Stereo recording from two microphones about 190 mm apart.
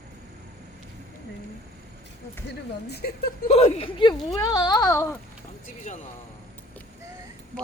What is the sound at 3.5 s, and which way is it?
Speech, 35° left (ahead or behind).